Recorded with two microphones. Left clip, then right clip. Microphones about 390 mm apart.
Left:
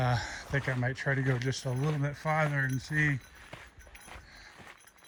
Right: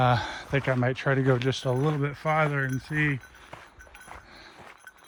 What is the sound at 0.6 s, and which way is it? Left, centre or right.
Speech, right.